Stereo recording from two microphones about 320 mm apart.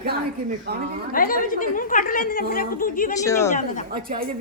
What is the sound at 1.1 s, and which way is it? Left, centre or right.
A woman's voice, left.